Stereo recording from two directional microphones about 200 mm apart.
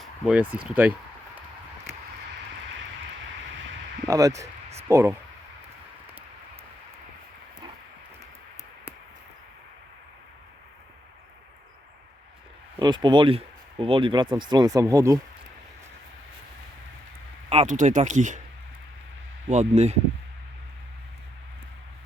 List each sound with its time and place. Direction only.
0.0 s a sound: 5° right (ahead or behind)
0.5 s speech: 5° right (ahead or behind)
4.1 s speech: 15° right (ahead or behind)
12.8 s speech: 20° right (ahead or behind)
17.5 s speech: 35° right (ahead or behind)
19.5 s speech: 35° right (ahead or behind)